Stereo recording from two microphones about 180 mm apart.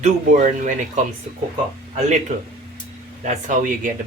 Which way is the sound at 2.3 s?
40° right (ahead or behind).